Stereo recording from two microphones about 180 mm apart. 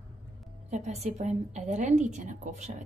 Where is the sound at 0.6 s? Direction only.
40° right (ahead or behind).